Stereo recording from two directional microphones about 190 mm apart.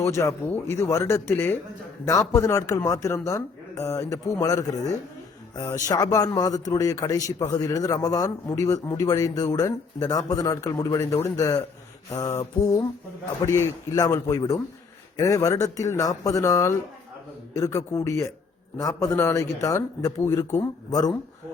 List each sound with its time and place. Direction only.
0.0 s a man's voice: 15° left (ahead or behind)
13.4 s a man's voice: 15° left (ahead or behind)